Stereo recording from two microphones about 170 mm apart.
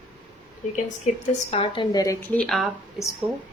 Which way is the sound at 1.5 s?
30° left (ahead or behind).